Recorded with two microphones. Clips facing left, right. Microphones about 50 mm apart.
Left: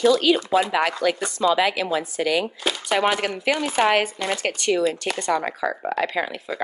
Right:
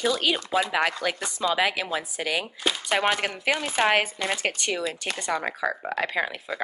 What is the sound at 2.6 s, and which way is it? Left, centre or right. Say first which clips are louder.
Speech: left 1 dB; centre.